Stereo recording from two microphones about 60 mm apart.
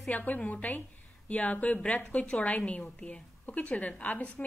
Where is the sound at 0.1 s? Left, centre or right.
Left.